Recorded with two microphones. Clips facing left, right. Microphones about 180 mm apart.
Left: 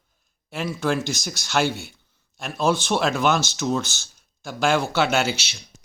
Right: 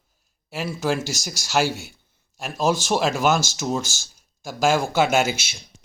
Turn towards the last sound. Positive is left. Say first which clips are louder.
# right 2 dB
turn(degrees=-10)  # may be behind; listen again after turning